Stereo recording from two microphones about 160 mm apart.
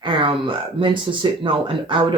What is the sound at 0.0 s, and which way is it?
Speech, 30° right (ahead or behind).